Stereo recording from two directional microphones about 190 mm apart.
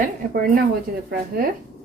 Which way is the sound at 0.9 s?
50° right (ahead or behind).